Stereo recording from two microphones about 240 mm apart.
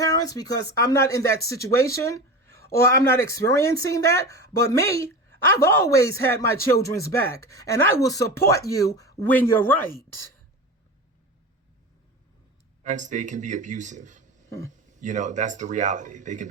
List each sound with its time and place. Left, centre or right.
0.0 s speech: centre
12.8 s speech: right